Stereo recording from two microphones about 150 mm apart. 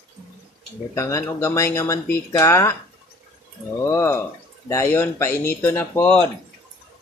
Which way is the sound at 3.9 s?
20° left (ahead or behind).